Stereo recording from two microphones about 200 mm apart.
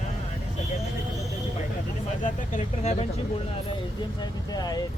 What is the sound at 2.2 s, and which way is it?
Speech, 35° left (ahead or behind).